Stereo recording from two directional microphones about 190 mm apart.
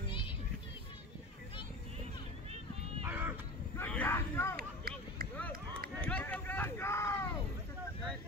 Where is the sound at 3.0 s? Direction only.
10° right (ahead or behind).